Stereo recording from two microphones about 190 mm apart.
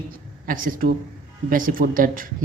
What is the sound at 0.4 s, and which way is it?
Speech, 45° right (ahead or behind).